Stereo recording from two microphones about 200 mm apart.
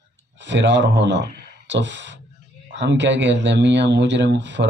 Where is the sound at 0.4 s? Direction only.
65° right (ahead or behind).